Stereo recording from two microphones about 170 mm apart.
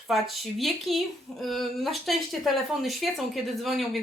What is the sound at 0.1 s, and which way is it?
Speech, centre (ahead or behind).